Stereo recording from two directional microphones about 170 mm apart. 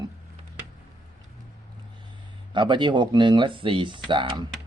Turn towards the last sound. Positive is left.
turn(degrees=-30)  # may be behind; listen again after turning